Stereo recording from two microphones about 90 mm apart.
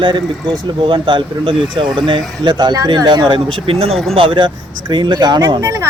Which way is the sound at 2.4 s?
55° right (ahead or behind).